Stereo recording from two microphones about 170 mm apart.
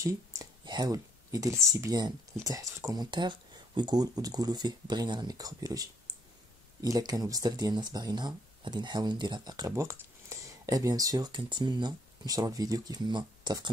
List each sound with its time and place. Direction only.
0.0 s speech: 20° right (ahead or behind)